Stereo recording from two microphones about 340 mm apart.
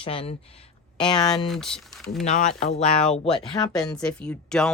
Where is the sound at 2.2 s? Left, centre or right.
Left.